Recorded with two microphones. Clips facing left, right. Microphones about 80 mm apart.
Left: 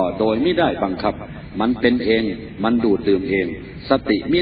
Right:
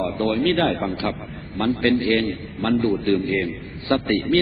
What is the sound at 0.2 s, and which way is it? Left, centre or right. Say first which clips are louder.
A man's voice: left 1 dB; left.